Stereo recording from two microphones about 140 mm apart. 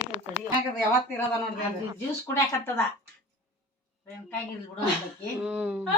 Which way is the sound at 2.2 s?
20° left (ahead or behind).